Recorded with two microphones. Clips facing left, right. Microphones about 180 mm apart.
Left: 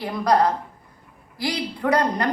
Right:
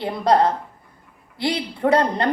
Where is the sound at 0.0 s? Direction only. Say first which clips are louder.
Right 2 dB; 25° right (ahead or behind).